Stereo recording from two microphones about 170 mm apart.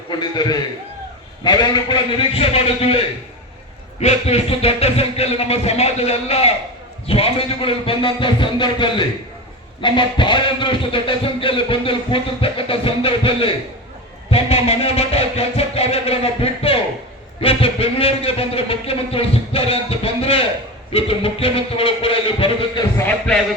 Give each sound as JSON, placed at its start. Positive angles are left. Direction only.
{"t": 0.2, "sound": "a man's voice", "side_deg": 25}
{"t": 4.0, "sound": "speech", "side_deg": 35}
{"t": 23.0, "sound": "a man's voice", "side_deg": 5}